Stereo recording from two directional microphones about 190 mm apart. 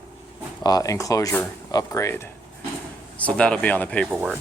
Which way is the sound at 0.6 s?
20° left (ahead or behind).